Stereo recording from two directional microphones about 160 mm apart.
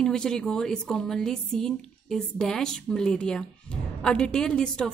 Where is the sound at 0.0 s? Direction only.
5° left (ahead or behind).